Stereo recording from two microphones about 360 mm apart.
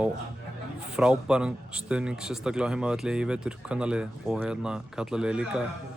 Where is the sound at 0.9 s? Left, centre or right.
Centre.